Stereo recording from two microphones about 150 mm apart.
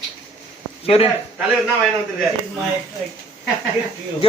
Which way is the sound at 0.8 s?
40° left (ahead or behind).